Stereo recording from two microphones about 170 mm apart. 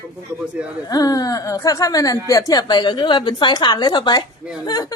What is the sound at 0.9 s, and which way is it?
A woman's voice, 20° left (ahead or behind).